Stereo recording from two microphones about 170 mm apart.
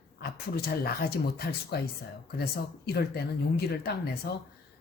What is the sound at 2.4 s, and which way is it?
Speech, 70° left (ahead or behind).